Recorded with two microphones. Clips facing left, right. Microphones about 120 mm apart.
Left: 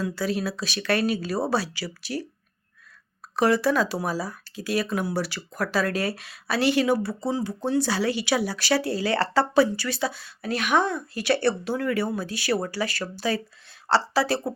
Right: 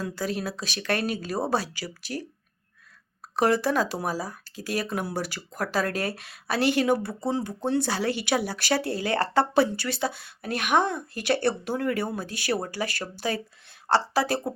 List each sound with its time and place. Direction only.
0.0 s speech: 45° right (ahead or behind)
3.3 s speech: 50° right (ahead or behind)